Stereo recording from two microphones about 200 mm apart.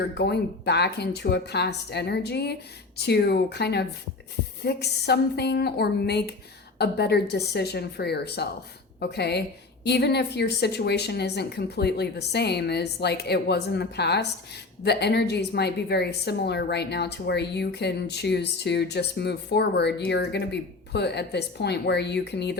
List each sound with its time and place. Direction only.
0.1 s a woman's voice: 55° left (ahead or behind)